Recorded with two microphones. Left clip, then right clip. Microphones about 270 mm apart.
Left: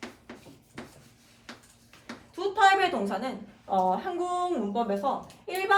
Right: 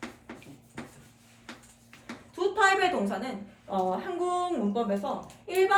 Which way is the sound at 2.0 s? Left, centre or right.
Centre.